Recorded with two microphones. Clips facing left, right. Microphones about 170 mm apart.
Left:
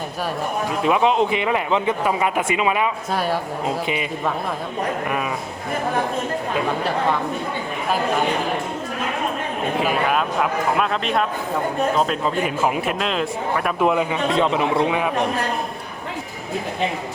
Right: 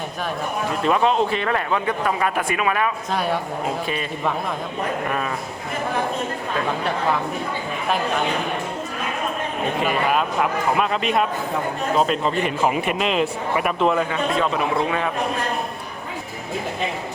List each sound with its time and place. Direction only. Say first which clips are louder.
0.8 s speech: left 1 dB; 10° left (ahead or behind)
9.8 s speech: even; centre (ahead or behind)
13.7 s speech: left 2 dB; 15° left (ahead or behind)